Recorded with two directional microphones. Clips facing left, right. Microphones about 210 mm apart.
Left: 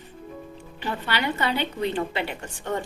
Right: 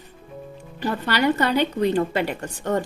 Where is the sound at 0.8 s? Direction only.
40° right (ahead or behind).